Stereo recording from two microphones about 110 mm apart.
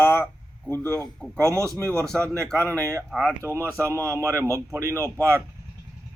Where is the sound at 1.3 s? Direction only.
25° right (ahead or behind).